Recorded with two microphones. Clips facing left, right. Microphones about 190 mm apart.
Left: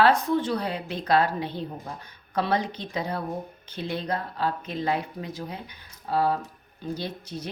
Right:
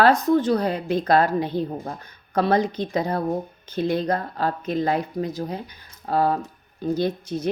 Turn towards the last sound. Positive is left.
turn(degrees=-50)  # may be behind; listen again after turning